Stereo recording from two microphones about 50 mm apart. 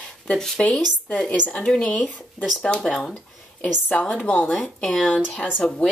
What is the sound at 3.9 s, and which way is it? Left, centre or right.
Speech, left.